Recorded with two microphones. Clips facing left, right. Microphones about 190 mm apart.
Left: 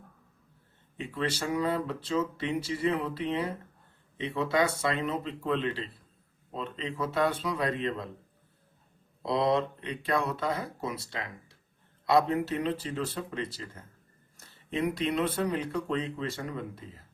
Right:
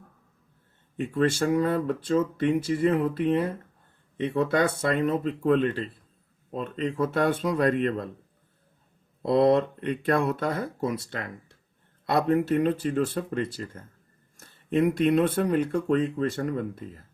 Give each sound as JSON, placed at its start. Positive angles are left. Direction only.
{"t": 0.9, "sound": "speech", "side_deg": -50}
{"t": 9.2, "sound": "speech", "side_deg": -55}